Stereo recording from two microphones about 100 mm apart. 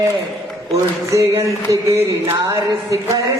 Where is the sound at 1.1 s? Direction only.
30° right (ahead or behind).